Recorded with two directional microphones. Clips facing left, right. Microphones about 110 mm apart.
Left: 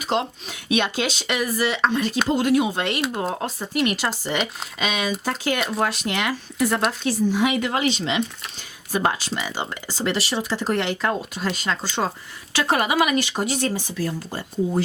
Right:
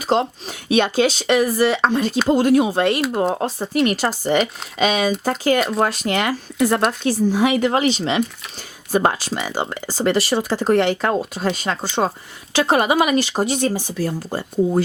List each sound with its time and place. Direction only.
0.0 s speech: 35° right (ahead or behind)
11.8 s speech: 25° right (ahead or behind)
13.9 s speech: 40° right (ahead or behind)